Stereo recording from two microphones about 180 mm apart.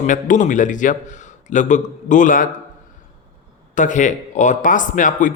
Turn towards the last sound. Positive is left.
turn(degrees=45)  # may be behind; listen again after turning